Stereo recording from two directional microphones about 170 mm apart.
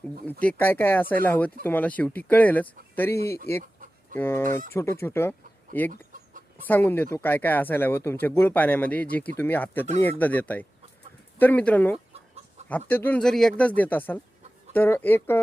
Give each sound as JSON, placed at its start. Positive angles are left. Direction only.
{"t": 0.3, "sound": "speech", "side_deg": 10}
{"t": 3.6, "sound": "chicken", "side_deg": -50}
{"t": 4.2, "sound": "speech", "side_deg": 15}